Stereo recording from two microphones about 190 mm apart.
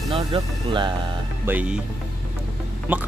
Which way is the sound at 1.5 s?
10° right (ahead or behind).